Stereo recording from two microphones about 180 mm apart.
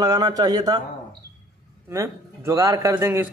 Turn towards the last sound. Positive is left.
turn(degrees=-15)  # may be behind; listen again after turning